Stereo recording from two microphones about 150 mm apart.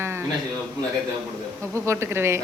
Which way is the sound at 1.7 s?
20° right (ahead or behind).